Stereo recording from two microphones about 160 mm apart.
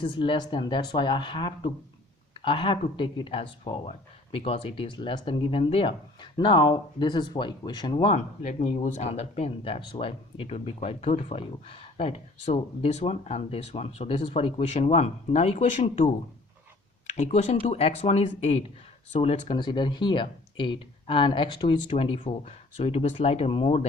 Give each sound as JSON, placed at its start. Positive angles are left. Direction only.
{"t": 0.0, "sound": "speech", "side_deg": 30}
{"t": 8.4, "sound": "speech", "side_deg": 45}
{"t": 17.2, "sound": "speech", "side_deg": 45}